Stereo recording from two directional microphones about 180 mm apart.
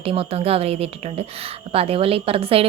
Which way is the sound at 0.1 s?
30° right (ahead or behind).